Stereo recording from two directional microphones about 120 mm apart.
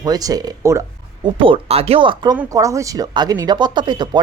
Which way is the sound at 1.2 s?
45° right (ahead or behind).